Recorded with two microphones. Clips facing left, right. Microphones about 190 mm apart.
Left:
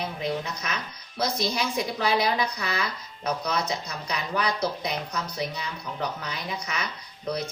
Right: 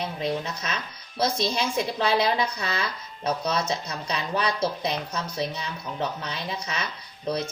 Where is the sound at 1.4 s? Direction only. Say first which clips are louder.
Right 1 dB; 25° right (ahead or behind).